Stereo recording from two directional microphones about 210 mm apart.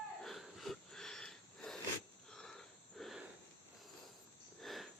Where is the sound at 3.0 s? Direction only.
Centre (ahead or behind).